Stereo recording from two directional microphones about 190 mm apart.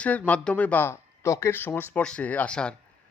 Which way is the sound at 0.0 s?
10° left (ahead or behind).